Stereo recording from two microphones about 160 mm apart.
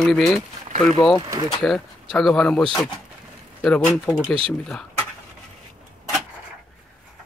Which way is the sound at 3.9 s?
5° left (ahead or behind).